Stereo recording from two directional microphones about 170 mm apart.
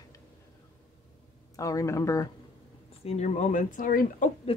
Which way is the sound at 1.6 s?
20° left (ahead or behind).